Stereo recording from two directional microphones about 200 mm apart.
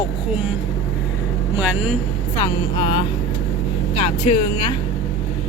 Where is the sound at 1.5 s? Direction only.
5° right (ahead or behind).